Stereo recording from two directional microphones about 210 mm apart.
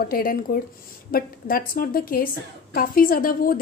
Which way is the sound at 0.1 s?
45° left (ahead or behind).